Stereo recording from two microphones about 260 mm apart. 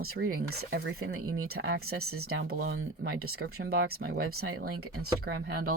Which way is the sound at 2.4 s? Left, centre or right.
Right.